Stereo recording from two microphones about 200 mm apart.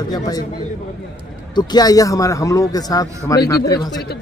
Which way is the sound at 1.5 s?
20° left (ahead or behind).